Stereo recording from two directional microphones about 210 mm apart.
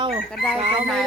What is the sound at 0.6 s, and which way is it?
Speech, 30° right (ahead or behind).